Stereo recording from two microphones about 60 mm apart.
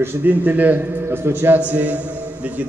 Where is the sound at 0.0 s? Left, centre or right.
Right.